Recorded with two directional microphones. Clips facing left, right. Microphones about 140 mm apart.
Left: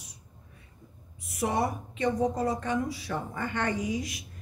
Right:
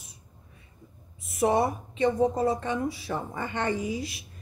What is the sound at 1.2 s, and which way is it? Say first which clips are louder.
A woman's voice: right 5 dB; 25° right (ahead or behind).